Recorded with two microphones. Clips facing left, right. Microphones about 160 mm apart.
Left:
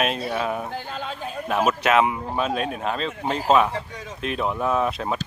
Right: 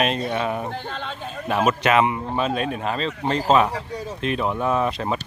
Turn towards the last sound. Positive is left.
turn(degrees=0)  # may be behind; listen again after turning